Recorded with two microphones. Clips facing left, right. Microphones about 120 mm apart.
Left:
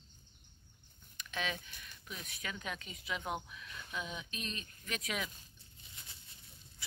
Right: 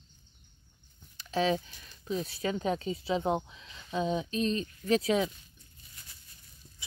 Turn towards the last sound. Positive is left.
turn(degrees=20)  # may be behind; listen again after turning